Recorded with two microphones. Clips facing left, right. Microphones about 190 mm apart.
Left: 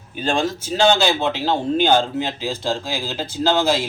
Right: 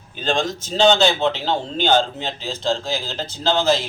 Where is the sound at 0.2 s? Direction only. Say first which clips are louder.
Left 1 dB; 10° left (ahead or behind).